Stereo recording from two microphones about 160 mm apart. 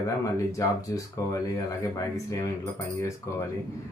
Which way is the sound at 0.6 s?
20° left (ahead or behind).